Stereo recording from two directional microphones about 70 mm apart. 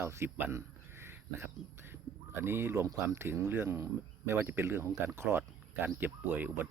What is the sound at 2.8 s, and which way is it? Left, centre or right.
Speech, right.